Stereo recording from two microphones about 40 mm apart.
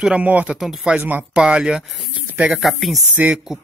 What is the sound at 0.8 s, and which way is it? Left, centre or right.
Speech, right.